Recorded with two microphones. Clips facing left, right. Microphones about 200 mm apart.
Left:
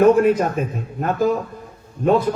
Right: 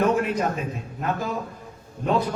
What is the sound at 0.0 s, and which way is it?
Speech, 50° left (ahead or behind).